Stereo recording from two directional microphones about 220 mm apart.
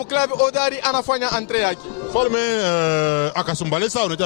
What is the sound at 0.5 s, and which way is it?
A man's voice, 10° left (ahead or behind).